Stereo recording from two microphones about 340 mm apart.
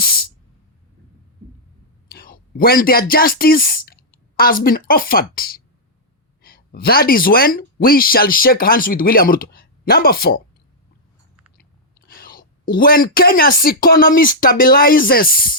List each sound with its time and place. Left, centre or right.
0.0 s music: left
2.0 s a sound: left
3.1 s speech: left
12.0 s speech: left